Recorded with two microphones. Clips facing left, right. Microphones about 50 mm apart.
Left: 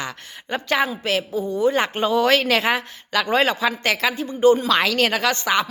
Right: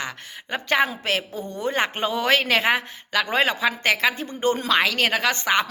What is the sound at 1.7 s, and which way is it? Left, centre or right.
Speech, right.